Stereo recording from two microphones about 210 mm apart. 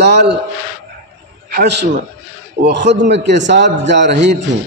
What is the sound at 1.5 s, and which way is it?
A man's voice, 50° right (ahead or behind).